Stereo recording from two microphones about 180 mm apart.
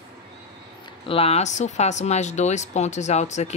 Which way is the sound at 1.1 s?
35° left (ahead or behind).